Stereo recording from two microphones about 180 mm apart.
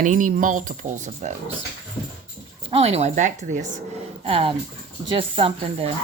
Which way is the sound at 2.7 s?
35° right (ahead or behind).